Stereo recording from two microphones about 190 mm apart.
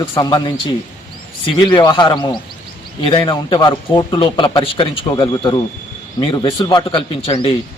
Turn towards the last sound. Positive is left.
turn(degrees=30)  # may be behind; listen again after turning